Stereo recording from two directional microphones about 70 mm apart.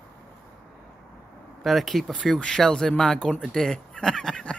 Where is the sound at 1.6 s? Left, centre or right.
Centre.